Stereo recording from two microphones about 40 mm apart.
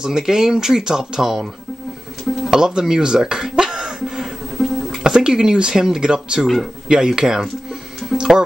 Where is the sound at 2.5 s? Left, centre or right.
Centre.